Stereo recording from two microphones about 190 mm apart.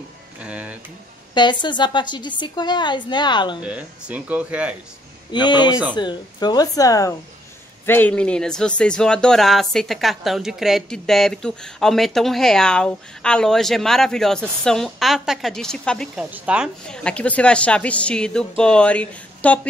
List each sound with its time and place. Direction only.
0.4 s speech: 5° right (ahead or behind)
1.3 s a woman's voice: 25° left (ahead or behind)
3.6 s speech: 5° right (ahead or behind)
5.3 s a woman's voice: 25° left (ahead or behind); by 16.3 s 5° left (ahead or behind)
16.3 s speech: 5° right (ahead or behind)